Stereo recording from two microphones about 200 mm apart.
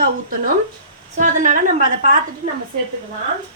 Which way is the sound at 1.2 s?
40° right (ahead or behind).